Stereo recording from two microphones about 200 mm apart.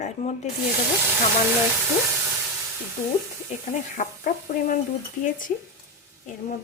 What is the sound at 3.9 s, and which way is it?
Speech, 40° left (ahead or behind).